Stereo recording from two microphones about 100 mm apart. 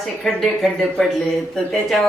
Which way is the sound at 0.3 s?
5° left (ahead or behind).